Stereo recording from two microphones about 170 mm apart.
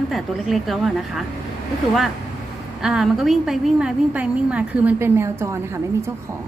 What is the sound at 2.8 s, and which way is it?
A woman's voice, 5° right (ahead or behind).